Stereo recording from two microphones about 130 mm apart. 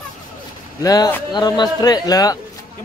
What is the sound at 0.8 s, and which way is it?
Speech, 30° left (ahead or behind).